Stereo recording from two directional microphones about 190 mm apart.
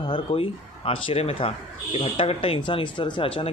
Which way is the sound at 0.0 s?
30° left (ahead or behind).